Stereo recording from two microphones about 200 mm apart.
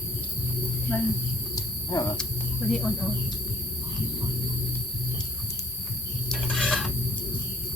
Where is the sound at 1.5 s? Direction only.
20° left (ahead or behind).